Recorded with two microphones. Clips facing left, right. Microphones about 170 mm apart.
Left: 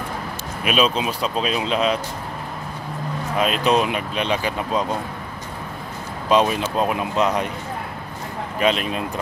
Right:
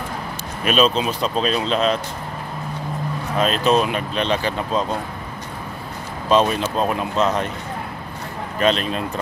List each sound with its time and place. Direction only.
0.7 s speech: 10° left (ahead or behind)
3.3 s speech: 10° left (ahead or behind)
6.2 s speech: 10° left (ahead or behind)
8.5 s speech: 10° left (ahead or behind)